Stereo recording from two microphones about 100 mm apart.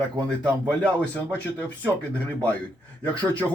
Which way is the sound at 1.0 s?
15° left (ahead or behind).